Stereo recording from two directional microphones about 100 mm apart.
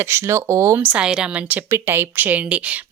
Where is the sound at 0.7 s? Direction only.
15° right (ahead or behind).